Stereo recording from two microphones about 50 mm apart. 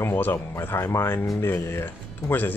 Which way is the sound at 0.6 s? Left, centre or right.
Left.